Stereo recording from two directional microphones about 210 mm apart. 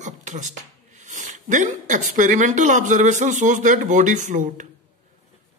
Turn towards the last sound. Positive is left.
turn(degrees=-35)  # may be behind; listen again after turning